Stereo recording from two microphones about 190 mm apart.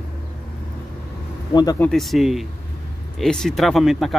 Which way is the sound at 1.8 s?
Centre (ahead or behind).